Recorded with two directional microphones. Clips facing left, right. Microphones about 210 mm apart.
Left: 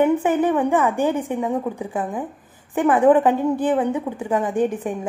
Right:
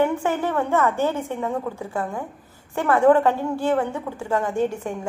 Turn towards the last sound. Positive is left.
turn(degrees=15)  # may be behind; listen again after turning